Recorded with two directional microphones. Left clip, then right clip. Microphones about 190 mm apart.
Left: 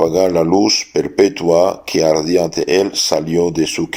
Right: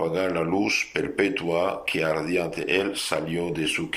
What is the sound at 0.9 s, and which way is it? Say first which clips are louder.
Speech: left 11 dB; 45° left (ahead or behind).